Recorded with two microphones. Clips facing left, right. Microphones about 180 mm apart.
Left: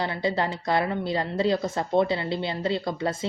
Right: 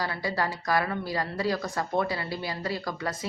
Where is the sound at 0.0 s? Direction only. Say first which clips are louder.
Left 4 dB; 25° left (ahead or behind).